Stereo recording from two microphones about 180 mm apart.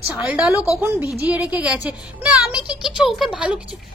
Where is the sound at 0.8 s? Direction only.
10° right (ahead or behind).